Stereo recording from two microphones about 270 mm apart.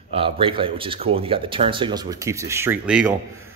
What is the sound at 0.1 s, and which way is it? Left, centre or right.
A man's voice, centre.